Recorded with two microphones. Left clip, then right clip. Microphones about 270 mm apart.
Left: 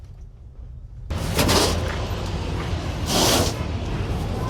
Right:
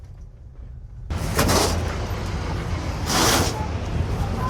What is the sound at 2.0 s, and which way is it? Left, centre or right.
Vehicle, centre.